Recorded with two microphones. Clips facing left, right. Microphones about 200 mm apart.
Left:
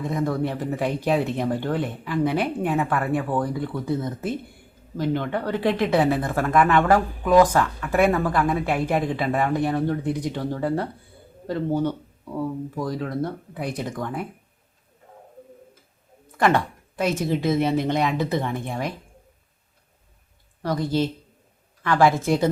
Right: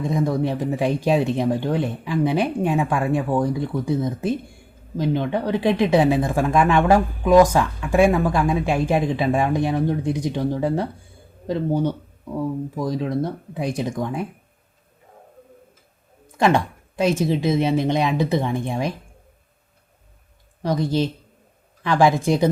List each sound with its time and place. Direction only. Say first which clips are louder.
0.0 s speech: right 3 dB; 15° right (ahead or behind)
16.4 s a woman's voice: right 2 dB; 15° right (ahead or behind)
20.6 s speech: right 2 dB; 20° right (ahead or behind)